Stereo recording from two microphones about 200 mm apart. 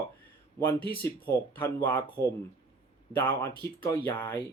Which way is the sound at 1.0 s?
10° left (ahead or behind).